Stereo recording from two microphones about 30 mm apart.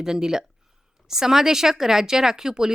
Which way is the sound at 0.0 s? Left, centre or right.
Right.